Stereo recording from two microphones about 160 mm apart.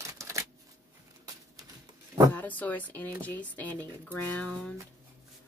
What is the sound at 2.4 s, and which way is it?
A woman's voice, 10° left (ahead or behind).